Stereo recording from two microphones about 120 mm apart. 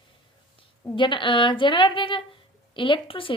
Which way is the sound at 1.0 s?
40° left (ahead or behind).